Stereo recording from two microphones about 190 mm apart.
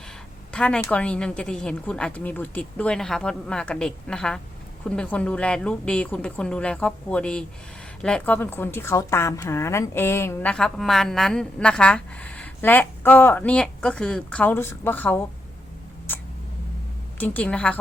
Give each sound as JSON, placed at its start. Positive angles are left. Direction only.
{"t": 0.5, "sound": "a woman's voice", "side_deg": 5}
{"t": 17.2, "sound": "a woman's voice", "side_deg": 5}